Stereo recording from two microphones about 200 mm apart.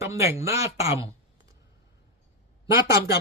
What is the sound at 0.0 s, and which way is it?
Speech, 15° right (ahead or behind).